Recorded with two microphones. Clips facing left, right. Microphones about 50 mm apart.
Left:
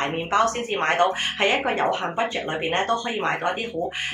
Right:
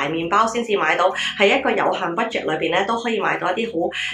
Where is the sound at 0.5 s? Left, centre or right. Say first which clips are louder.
Right 3 dB; right.